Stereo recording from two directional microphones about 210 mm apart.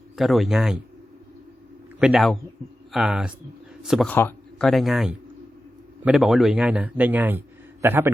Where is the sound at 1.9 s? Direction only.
Centre (ahead or behind).